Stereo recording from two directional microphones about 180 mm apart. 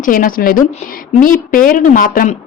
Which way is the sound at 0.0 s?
50° left (ahead or behind).